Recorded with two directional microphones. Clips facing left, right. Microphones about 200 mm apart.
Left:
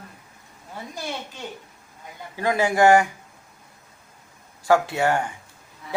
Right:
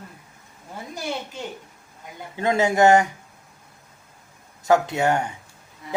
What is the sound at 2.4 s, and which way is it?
Speech, 20° right (ahead or behind).